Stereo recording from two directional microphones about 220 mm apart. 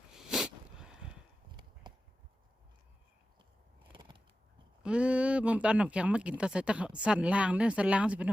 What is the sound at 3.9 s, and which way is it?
Scissors, 20° right (ahead or behind).